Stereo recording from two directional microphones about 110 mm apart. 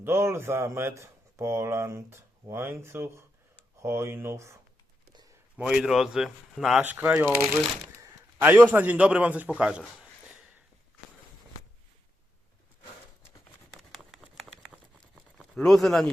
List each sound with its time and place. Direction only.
0.0 s speech: 25° right (ahead or behind)
5.5 s speech: 5° right (ahead or behind)
6.8 s a man's voice: 15° right (ahead or behind)
13.9 s a sound: 5° right (ahead or behind)